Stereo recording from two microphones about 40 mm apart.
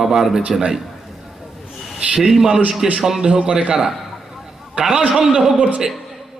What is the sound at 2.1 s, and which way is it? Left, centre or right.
A man's voice, centre.